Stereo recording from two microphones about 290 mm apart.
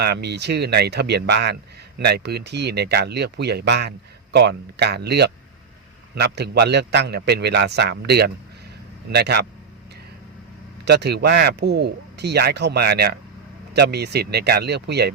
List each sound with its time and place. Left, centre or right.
0.0 s speech: right
10.8 s speech: right